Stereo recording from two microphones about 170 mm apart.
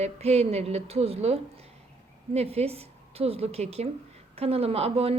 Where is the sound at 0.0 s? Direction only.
40° right (ahead or behind).